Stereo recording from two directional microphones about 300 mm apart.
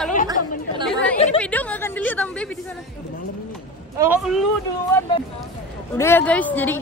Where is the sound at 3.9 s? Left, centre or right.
Centre.